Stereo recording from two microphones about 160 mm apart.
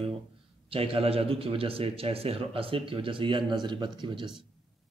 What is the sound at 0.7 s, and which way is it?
A man's voice, 35° right (ahead or behind).